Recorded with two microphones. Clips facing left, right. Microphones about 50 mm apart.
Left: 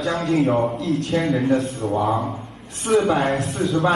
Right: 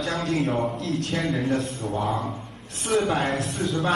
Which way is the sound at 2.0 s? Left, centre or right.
Centre.